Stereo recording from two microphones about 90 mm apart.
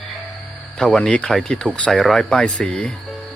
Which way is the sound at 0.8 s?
5° left (ahead or behind).